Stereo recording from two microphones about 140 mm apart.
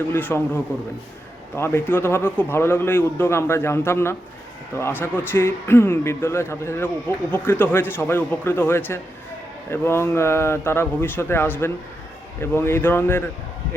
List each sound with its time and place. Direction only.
0.1 s a man's voice: 15° left (ahead or behind)